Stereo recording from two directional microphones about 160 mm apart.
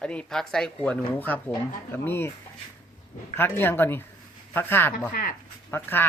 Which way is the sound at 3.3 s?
15° left (ahead or behind).